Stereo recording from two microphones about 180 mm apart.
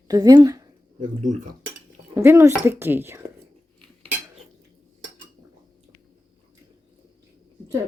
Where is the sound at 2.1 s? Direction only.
15° right (ahead or behind).